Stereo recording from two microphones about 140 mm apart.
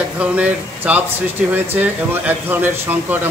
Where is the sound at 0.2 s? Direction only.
10° right (ahead or behind).